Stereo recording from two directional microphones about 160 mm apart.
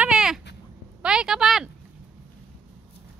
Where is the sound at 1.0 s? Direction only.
5° right (ahead or behind).